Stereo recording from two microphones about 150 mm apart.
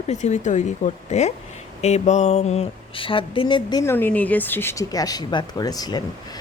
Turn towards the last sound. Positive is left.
turn(degrees=25)  # may be behind; listen again after turning